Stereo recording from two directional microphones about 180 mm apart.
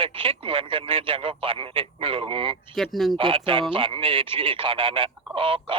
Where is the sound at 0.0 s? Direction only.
30° right (ahead or behind).